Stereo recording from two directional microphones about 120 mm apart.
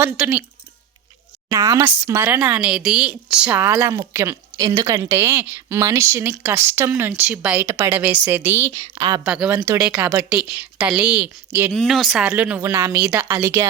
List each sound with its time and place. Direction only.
0.0 s a woman's voice: 15° right (ahead or behind)
1.5 s a woman's voice: 25° right (ahead or behind)
9.0 s speech: 35° right (ahead or behind)
9.2 s a woman's voice: 5° right (ahead or behind)
11.7 s a woman's voice: centre (ahead or behind); by 13.7 s 20° right (ahead or behind)